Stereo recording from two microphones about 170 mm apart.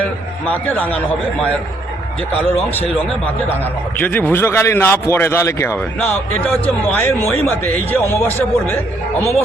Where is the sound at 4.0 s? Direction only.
10° left (ahead or behind).